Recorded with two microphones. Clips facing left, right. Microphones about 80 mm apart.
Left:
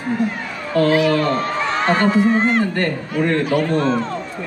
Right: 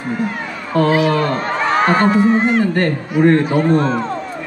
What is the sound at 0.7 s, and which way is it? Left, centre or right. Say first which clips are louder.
Speech: right 1 dB; right.